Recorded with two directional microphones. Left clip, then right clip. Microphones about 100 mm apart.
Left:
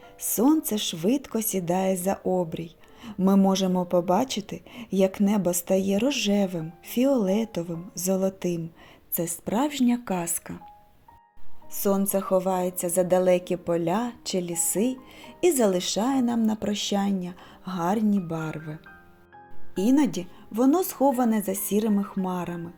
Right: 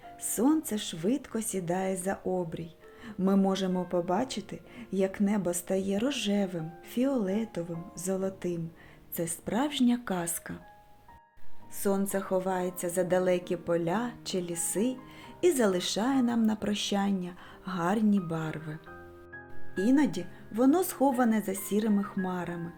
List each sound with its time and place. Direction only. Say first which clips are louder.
0.2 s a woman's voice: left 5 dB; 45° left (ahead or behind)
9.1 s a woman's voice: left 4 dB; 35° left (ahead or behind)
11.7 s a woman's voice: left 5 dB; 40° left (ahead or behind); by 18.8 s 20° left (ahead or behind)
19.7 s a woman's voice: left 4 dB; 50° left (ahead or behind); by 22.6 s 30° left (ahead or behind)